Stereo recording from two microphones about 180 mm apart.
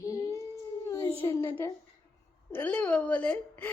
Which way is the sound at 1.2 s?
20° left (ahead or behind).